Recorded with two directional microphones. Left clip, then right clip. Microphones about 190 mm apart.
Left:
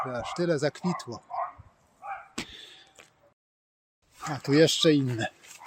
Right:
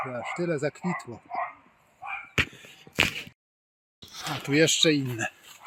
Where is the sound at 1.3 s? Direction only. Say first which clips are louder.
Right 1 dB; 50° right (ahead or behind).